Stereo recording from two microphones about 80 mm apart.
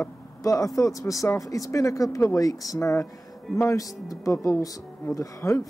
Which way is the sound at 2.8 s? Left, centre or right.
Left.